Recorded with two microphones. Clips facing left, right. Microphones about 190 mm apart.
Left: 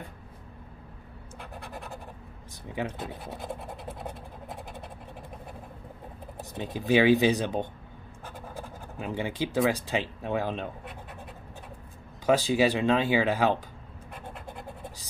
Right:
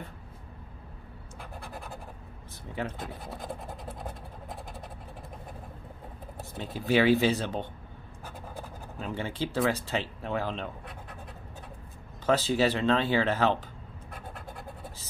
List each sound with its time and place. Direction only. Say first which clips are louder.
6.5 s speech: left 2 dB; 15° left (ahead or behind)
8.9 s speech: left 3 dB; 15° left (ahead or behind)
12.3 s speech: left 2 dB; 15° left (ahead or behind)